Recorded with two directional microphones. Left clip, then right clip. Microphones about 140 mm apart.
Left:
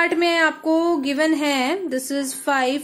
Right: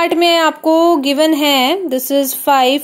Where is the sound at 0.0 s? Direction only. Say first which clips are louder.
Right 6 dB; 40° right (ahead or behind).